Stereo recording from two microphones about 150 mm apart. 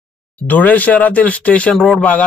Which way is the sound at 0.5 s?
10° left (ahead or behind).